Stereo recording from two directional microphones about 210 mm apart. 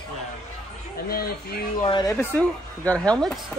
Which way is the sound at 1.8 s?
20° left (ahead or behind).